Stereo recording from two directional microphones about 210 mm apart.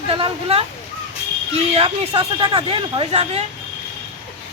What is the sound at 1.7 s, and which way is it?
Speech, 25° right (ahead or behind).